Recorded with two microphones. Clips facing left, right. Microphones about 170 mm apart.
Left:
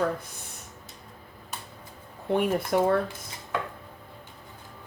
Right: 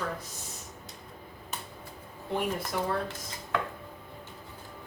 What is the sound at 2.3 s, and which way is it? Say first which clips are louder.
Speech: left 7 dB; 55° left (ahead or behind).